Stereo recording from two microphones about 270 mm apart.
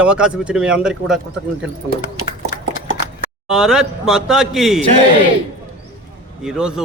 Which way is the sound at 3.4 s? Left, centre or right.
Centre.